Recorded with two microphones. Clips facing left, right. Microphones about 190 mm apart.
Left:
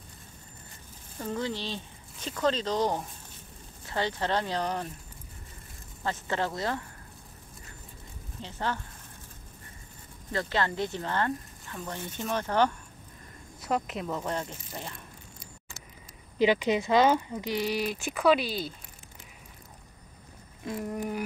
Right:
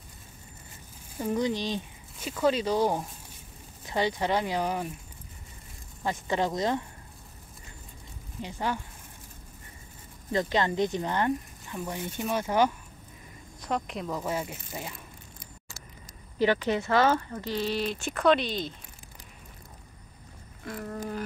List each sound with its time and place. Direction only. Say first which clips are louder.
1.1 s speech: right 5 dB; 15° right (ahead or behind)
6.0 s speech: right 3 dB; 15° right (ahead or behind)
8.4 s speech: right 2 dB; 15° right (ahead or behind)
10.3 s speech: right 3 dB; 20° right (ahead or behind)
13.6 s speech: left 1 dB; 5° left (ahead or behind)
16.3 s speech: left 1 dB; 15° left (ahead or behind)
20.6 s speech: left 3 dB; 20° left (ahead or behind)